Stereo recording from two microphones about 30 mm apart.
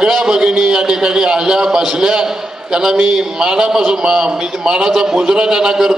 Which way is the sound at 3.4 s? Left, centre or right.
Right.